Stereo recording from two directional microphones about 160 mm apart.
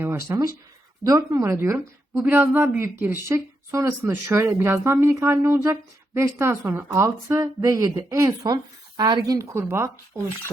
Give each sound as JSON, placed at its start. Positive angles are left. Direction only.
{"t": 0.0, "sound": "a woman's voice", "side_deg": -15}